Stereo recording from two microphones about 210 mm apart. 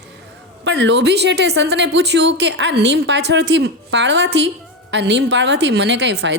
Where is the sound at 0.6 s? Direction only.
55° right (ahead or behind).